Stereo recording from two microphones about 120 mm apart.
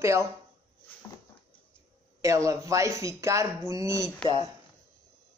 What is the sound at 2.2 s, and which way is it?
Speech, 25° right (ahead or behind).